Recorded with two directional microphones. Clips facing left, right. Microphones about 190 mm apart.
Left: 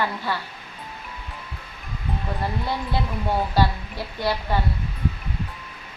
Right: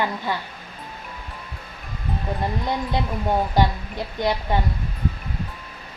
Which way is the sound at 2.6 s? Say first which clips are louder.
Right 2 dB; 20° right (ahead or behind).